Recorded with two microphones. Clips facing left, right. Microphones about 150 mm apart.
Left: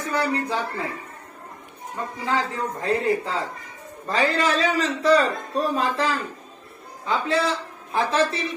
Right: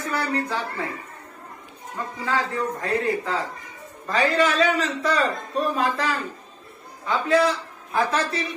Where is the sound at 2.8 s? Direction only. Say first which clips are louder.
Left 5 dB; 25° left (ahead or behind).